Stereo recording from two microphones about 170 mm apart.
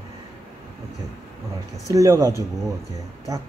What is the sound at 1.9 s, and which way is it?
Speech, 15° right (ahead or behind).